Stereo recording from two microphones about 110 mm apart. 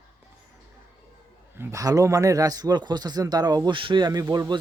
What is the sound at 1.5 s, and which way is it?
Speech, 20° right (ahead or behind).